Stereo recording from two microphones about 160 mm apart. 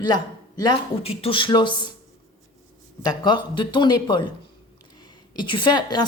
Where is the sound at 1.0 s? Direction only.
35° left (ahead or behind).